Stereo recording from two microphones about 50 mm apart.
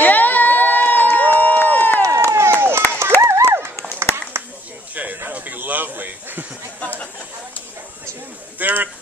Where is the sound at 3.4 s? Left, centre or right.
Right.